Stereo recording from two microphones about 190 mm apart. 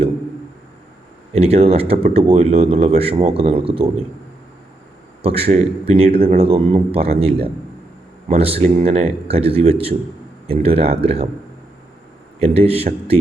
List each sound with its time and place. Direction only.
1.3 s speech: 30° right (ahead or behind)
5.2 s speech: 30° right (ahead or behind)
8.3 s speech: 30° right (ahead or behind)
12.4 s speech: 30° right (ahead or behind)